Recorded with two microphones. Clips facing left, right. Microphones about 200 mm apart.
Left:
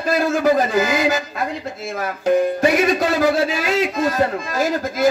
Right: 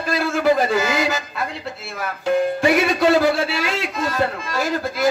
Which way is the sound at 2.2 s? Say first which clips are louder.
Left 2 dB; 40° left (ahead or behind).